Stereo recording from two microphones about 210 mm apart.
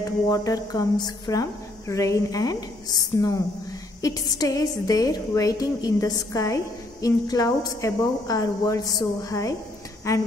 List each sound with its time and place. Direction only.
0.0 s a woman's voice: 15° left (ahead or behind)